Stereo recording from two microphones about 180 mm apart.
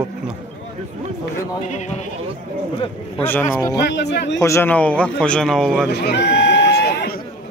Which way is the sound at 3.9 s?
70° left (ahead or behind).